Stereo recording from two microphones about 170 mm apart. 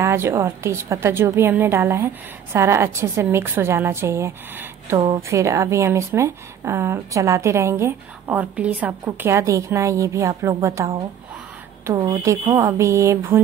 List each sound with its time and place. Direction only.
0.0 s a woman's voice: 15° right (ahead or behind)